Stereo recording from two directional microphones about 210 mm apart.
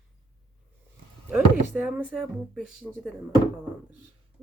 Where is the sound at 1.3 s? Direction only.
5° right (ahead or behind).